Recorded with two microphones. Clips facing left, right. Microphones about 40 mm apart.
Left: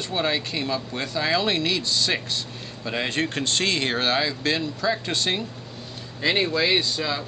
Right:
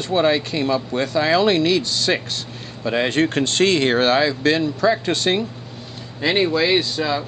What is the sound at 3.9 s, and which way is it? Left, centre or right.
Speech, right.